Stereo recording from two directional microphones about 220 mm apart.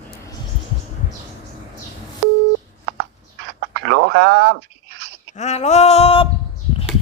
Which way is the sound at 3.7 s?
55° right (ahead or behind).